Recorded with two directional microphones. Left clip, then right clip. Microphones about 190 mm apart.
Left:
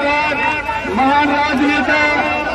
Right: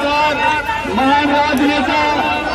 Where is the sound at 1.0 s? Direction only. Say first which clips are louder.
Even; 10° left (ahead or behind).